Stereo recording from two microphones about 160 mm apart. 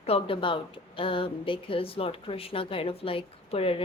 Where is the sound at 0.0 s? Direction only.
35° left (ahead or behind).